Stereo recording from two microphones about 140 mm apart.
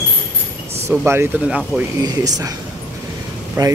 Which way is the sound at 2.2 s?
25° right (ahead or behind).